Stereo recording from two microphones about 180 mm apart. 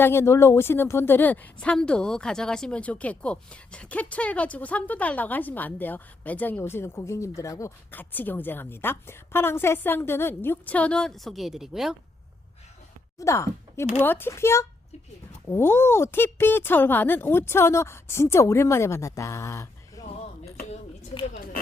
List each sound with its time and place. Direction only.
0.0 s a woman's voice: 15° left (ahead or behind); by 11.9 s centre (ahead or behind)
13.1 s a woman's voice: 15° left (ahead or behind)